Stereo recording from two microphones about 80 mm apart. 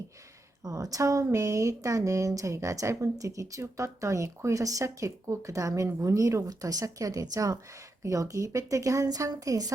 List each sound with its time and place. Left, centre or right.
0.6 s speech: right